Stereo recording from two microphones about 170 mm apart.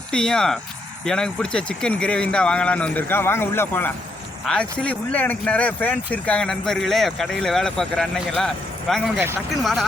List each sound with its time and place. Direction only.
0.1 s speech: 5° left (ahead or behind)
9.1 s speech: 15° right (ahead or behind)